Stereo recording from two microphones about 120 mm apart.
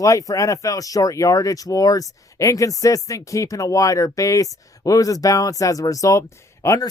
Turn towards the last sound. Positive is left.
turn(degrees=30)  # may be behind; listen again after turning